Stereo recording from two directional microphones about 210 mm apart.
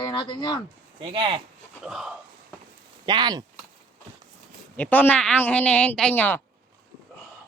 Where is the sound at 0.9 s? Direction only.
25° right (ahead or behind).